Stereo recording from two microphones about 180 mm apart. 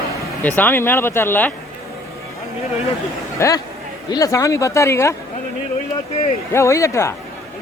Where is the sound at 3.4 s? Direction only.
20° left (ahead or behind).